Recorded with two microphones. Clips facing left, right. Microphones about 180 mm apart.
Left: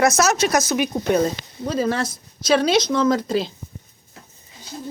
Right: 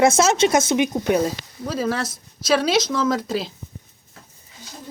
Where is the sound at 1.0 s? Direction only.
10° right (ahead or behind).